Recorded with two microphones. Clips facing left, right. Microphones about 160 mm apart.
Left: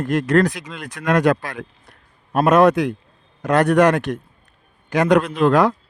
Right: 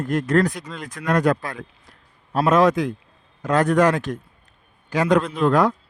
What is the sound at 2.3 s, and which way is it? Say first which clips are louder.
A man's voice: left 3 dB; 60° left (ahead or behind).